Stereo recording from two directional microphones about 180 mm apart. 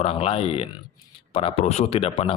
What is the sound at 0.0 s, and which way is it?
A man's voice, 35° left (ahead or behind).